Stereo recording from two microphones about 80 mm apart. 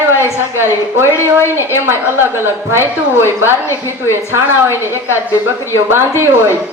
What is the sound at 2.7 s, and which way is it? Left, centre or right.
Speech, right.